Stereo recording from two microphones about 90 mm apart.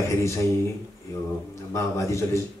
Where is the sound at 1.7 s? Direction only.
35° left (ahead or behind).